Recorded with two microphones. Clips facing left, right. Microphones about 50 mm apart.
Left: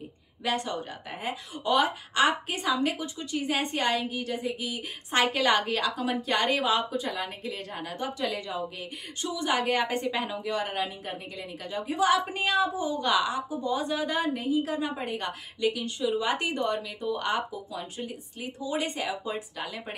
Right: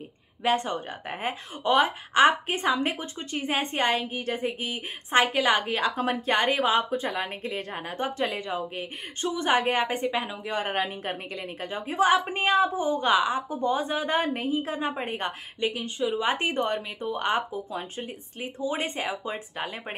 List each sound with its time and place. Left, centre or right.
0.4 s a woman's voice: right
5.2 s a woman's voice: centre
5.8 s a woman's voice: right
9.9 s a woman's voice: centre
10.4 s a woman's voice: right
10.7 s a woman's voice: right
11.7 s a woman's voice: right
13.5 s a woman's voice: right
13.7 s a woman's voice: right